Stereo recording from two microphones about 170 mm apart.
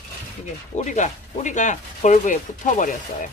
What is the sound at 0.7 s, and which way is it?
Speech, 45° left (ahead or behind).